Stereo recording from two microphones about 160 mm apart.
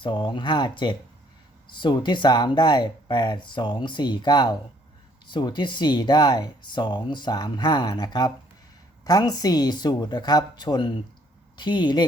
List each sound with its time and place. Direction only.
0.0 s speech: 30° left (ahead or behind)